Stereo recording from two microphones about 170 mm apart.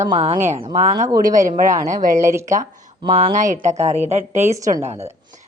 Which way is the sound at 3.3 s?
50° right (ahead or behind).